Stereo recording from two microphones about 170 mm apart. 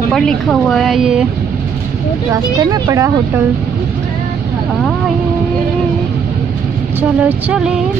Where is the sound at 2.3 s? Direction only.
20° right (ahead or behind).